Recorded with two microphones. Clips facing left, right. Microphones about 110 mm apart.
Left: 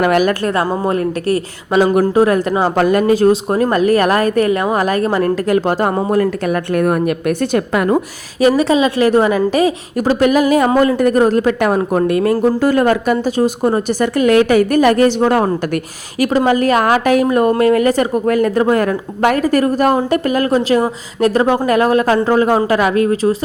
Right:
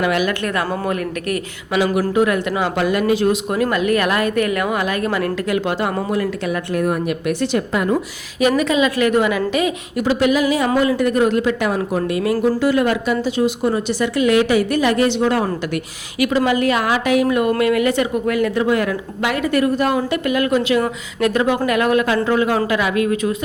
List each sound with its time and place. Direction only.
0.0 s speech: 45° left (ahead or behind)
0.4 s speech: 30° left (ahead or behind); by 7.9 s 55° left (ahead or behind)
7.9 s speech: 35° left (ahead or behind)